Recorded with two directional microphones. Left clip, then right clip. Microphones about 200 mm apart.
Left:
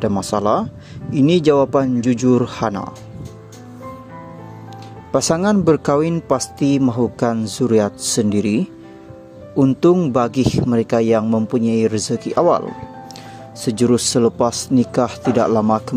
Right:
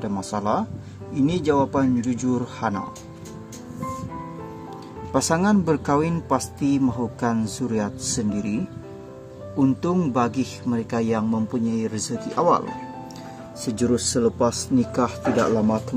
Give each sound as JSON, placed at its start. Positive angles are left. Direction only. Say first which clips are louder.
{"t": 0.0, "sound": "speech", "louder": "left 8 dB", "side_deg": 40}
{"t": 5.1, "sound": "speech", "louder": "left 5 dB", "side_deg": 35}
{"t": 9.6, "sound": "speech", "louder": "left 8 dB", "side_deg": 35}
{"t": 13.7, "sound": "speech", "louder": "left 7 dB", "side_deg": 35}